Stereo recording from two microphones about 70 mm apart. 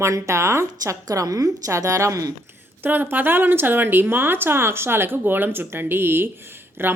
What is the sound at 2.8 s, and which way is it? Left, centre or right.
Speech, right.